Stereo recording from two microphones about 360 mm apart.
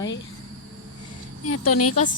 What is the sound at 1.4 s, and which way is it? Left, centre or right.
Speech, left.